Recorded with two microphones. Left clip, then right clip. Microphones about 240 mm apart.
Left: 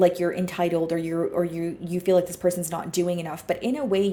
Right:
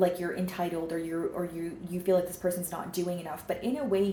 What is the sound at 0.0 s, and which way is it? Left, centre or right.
Speech, left.